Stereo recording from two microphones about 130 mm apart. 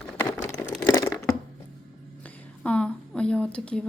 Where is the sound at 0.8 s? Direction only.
20° left (ahead or behind).